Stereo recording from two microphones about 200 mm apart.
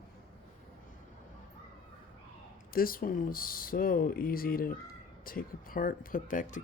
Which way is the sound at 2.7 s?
45° left (ahead or behind).